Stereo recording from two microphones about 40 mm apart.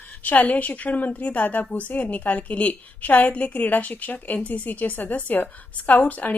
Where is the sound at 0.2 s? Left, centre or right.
Left.